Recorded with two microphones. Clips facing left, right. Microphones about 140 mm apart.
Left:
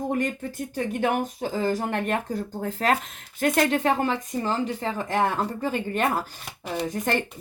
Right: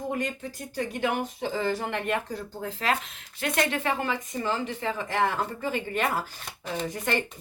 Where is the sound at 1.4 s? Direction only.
45° left (ahead or behind).